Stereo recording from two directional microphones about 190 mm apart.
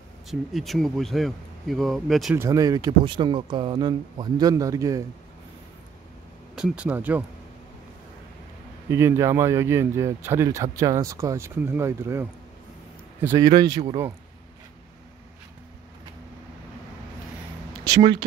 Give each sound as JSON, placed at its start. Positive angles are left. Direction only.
{"t": 0.3, "sound": "a man's voice", "side_deg": 0}
{"t": 2.3, "sound": "speech", "side_deg": -15}
{"t": 6.5, "sound": "speech", "side_deg": -5}
{"t": 8.9, "sound": "speech", "side_deg": -15}
{"t": 17.8, "sound": "speech", "side_deg": -20}